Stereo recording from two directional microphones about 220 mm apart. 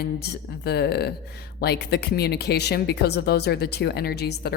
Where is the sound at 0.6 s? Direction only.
45° left (ahead or behind).